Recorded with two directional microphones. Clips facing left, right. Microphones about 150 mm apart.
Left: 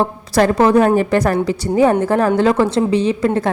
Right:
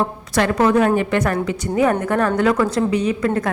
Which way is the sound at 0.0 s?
35° left (ahead or behind).